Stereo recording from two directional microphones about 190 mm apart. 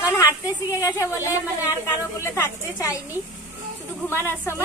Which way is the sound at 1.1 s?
10° right (ahead or behind).